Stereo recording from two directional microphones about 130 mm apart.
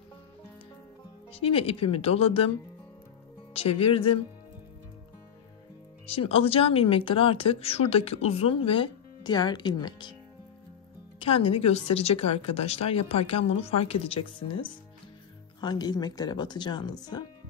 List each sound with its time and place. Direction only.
1.3 s speech: 45° left (ahead or behind)
3.5 s speech: 50° left (ahead or behind)
6.0 s speech: 50° left (ahead or behind)
11.1 s speech: 45° left (ahead or behind); by 17.2 s 30° left (ahead or behind)